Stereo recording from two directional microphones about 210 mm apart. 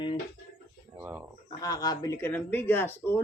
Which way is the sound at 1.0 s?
10° right (ahead or behind).